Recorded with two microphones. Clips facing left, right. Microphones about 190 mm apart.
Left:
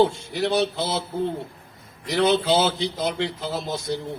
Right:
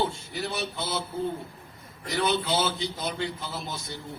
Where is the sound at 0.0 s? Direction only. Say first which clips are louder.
Left 9 dB; 75° left (ahead or behind).